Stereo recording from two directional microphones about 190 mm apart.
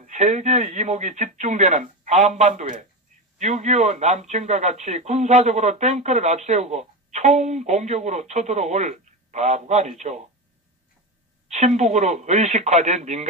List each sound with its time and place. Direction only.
0.0 s a man's voice: 40° right (ahead or behind)
11.4 s a man's voice: 35° right (ahead or behind)